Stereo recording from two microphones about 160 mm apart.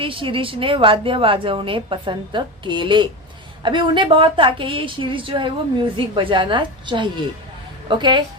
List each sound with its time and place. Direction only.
0.0 s a woman's voice: 35° right (ahead or behind)